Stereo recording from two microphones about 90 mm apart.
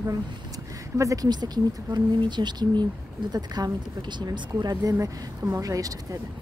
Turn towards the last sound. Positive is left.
turn(degrees=-40)  # may be behind; listen again after turning